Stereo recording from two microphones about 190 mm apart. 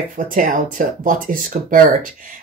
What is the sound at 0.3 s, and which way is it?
Speech, 45° right (ahead or behind).